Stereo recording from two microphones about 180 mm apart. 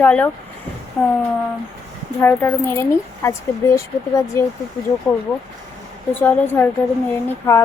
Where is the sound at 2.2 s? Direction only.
10° left (ahead or behind).